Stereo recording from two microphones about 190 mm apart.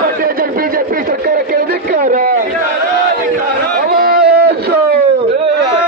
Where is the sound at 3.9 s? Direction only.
50° right (ahead or behind).